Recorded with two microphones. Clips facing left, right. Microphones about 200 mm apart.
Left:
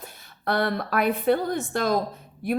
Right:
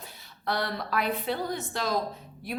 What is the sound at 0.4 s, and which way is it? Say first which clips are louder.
A woman's voice: left 6 dB; 55° left (ahead or behind).